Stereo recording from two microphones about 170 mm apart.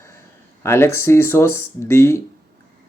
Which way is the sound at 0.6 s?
15° left (ahead or behind).